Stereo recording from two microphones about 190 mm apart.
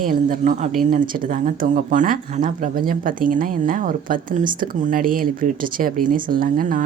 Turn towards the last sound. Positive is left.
turn(degrees=-45)  # may be behind; listen again after turning